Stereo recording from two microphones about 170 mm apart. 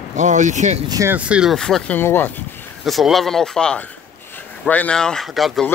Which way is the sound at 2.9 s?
Centre (ahead or behind).